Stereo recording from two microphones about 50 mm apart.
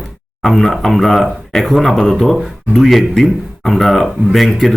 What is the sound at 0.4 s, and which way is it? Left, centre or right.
Speech, centre.